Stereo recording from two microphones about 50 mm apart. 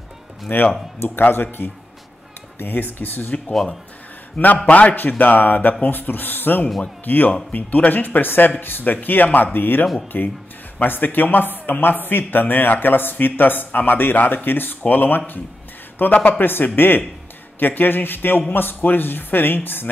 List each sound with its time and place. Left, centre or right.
0.5 s speech: left
4.6 s speech: left